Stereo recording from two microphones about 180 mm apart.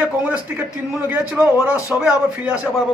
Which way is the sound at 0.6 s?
10° right (ahead or behind).